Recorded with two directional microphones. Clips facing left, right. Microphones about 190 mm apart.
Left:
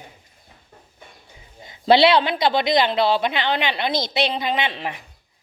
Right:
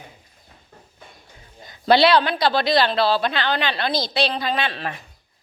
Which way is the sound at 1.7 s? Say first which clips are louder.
Left 1 dB; 25° left (ahead or behind).